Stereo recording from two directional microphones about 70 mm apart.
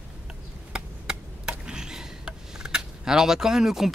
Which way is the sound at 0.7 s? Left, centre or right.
Centre.